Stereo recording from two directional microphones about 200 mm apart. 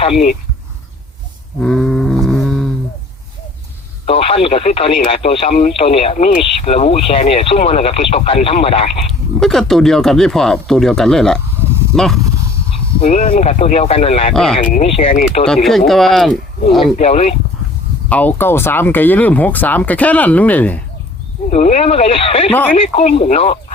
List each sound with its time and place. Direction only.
1.6 s a sound: 5° left (ahead or behind)
4.0 s radio: 30° left (ahead or behind)
4.4 s speech: 30° left (ahead or behind)
9.4 s speech: centre (ahead or behind)
13.0 s speech: 35° left (ahead or behind)
14.3 s speech: centre (ahead or behind)
14.6 s speech: 40° left (ahead or behind)
14.8 s speech: 30° left (ahead or behind)
15.4 s speech: centre (ahead or behind)
16.8 s speech: 30° left (ahead or behind)
18.1 s speech: 10° left (ahead or behind)
21.5 s speech: 35° left (ahead or behind)